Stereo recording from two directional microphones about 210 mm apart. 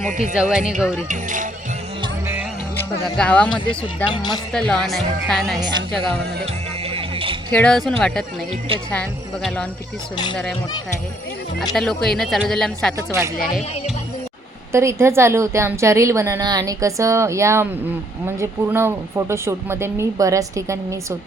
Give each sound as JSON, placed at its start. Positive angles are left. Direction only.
{"t": 0.0, "sound": "speech", "side_deg": -35}
{"t": 0.3, "sound": "speech", "side_deg": -5}
{"t": 1.0, "sound": "speech", "side_deg": -35}
{"t": 2.7, "sound": "speech", "side_deg": 5}
{"t": 3.5, "sound": "speech", "side_deg": 25}
{"t": 4.5, "sound": "speech", "side_deg": 5}
{"t": 5.5, "sound": "a woman's voice", "side_deg": -20}
{"t": 6.1, "sound": "music", "side_deg": -25}
{"t": 7.5, "sound": "speech", "side_deg": 5}
{"t": 11.7, "sound": "speech", "side_deg": 0}
{"t": 13.0, "sound": "a woman's voice", "side_deg": -15}
{"t": 14.7, "sound": "a woman's voice", "side_deg": -15}